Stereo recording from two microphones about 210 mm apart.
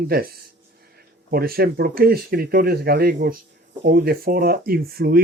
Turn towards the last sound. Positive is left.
turn(degrees=-45)  # may be behind; listen again after turning